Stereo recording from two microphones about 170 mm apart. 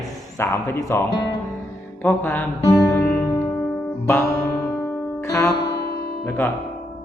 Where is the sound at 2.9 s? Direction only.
10° left (ahead or behind).